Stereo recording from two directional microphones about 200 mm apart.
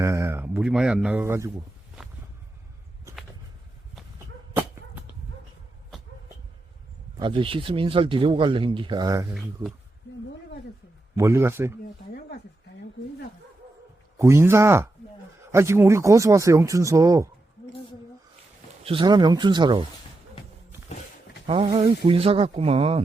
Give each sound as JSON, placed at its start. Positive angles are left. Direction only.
{"t": 0.0, "sound": "speech", "side_deg": -15}
{"t": 7.2, "sound": "speech", "side_deg": -25}
{"t": 11.2, "sound": "speech", "side_deg": -15}
{"t": 14.2, "sound": "speech", "side_deg": -15}
{"t": 18.8, "sound": "speech", "side_deg": -25}
{"t": 21.4, "sound": "speech", "side_deg": -25}